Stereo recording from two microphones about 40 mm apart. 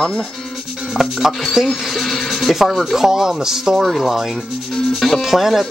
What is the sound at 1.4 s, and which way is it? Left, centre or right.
Speech, centre.